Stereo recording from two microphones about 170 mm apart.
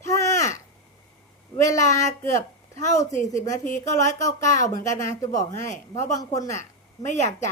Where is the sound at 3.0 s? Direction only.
45° left (ahead or behind).